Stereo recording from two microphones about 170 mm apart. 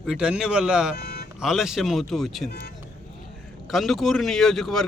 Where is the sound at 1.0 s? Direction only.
70° left (ahead or behind).